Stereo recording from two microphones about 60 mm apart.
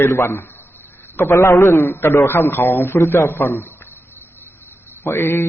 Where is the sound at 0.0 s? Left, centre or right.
Left.